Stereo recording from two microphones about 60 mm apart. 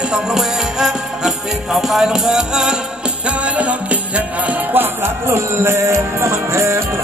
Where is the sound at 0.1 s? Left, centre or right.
Centre.